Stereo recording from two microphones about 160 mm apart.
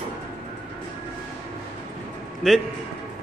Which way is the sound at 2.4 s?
5° left (ahead or behind).